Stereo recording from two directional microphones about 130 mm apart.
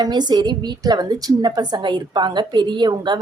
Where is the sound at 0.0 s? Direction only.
35° right (ahead or behind).